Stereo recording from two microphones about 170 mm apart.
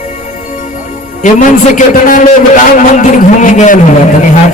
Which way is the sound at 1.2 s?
50° left (ahead or behind).